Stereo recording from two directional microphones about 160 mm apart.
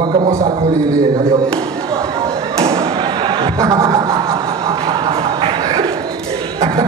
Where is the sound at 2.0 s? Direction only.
20° right (ahead or behind).